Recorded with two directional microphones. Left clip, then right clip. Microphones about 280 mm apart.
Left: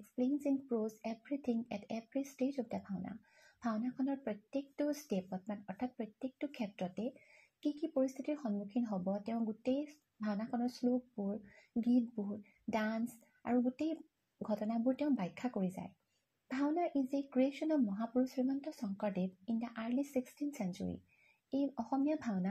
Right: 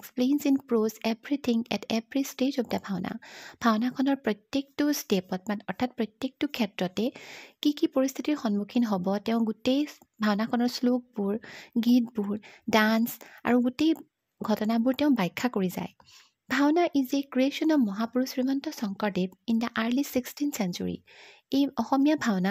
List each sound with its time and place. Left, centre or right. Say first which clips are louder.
0.2 s a woman's voice: right 10 dB; right